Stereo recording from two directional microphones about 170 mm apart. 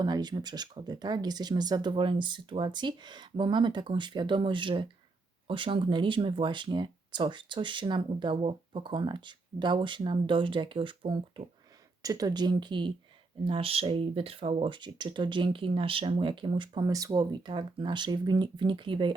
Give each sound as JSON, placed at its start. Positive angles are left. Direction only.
{"t": 0.0, "sound": "speech", "side_deg": -25}